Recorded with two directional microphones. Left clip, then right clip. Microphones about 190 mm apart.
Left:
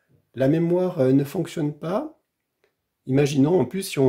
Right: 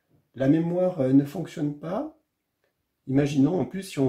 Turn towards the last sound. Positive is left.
turn(degrees=45)  # may be behind; listen again after turning